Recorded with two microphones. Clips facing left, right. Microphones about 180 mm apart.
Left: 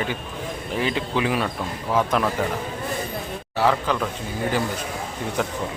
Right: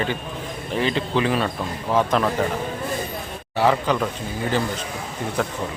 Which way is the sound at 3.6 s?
5° right (ahead or behind).